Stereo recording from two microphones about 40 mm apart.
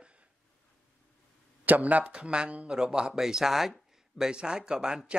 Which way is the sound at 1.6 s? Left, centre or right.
Right.